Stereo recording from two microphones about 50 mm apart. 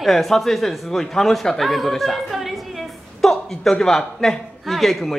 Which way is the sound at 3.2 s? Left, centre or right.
Centre.